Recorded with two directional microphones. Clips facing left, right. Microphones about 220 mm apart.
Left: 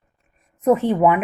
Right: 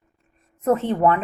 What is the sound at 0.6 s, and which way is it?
Speech, 10° left (ahead or behind).